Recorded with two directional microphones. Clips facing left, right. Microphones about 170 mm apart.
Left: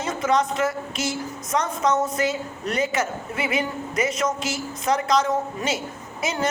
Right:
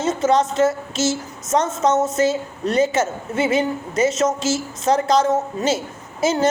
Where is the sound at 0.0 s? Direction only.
25° right (ahead or behind).